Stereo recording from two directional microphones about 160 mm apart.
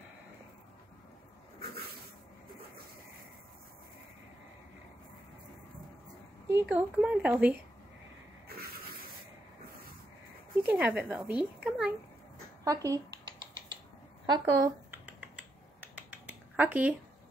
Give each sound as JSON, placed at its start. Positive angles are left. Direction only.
{"t": 6.5, "sound": "a woman's voice", "side_deg": -10}
{"t": 10.6, "sound": "a woman's voice", "side_deg": -10}
{"t": 12.6, "sound": "speech", "side_deg": -20}
{"t": 14.2, "sound": "speech", "side_deg": -25}
{"t": 15.0, "sound": "computer keyboard", "side_deg": -10}